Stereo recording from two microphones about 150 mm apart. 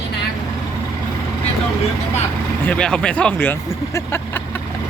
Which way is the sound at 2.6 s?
5° left (ahead or behind).